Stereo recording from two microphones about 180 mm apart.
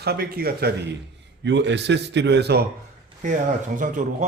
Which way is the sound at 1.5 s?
75° right (ahead or behind).